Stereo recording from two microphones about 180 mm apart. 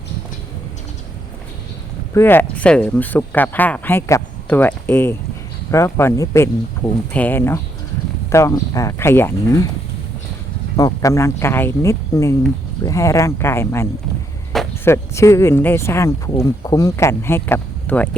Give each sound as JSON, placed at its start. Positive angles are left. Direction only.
{"t": 2.1, "sound": "speech", "side_deg": 10}
{"t": 10.8, "sound": "speech", "side_deg": 20}
{"t": 14.5, "sound": "a sound", "side_deg": 0}
{"t": 14.8, "sound": "speech", "side_deg": 15}